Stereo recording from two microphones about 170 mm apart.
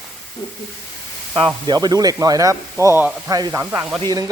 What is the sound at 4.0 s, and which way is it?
Speech, 25° right (ahead or behind).